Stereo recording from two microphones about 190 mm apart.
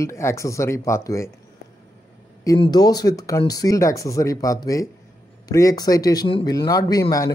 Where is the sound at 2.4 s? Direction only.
20° left (ahead or behind).